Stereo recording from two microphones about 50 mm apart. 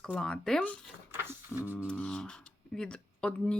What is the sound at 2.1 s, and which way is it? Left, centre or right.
Speech, centre.